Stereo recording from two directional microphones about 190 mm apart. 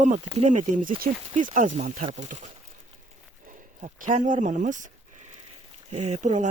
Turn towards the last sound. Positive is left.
turn(degrees=-40)  # may be behind; listen again after turning